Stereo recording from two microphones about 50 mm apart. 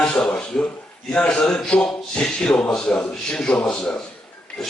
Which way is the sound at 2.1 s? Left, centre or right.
Centre.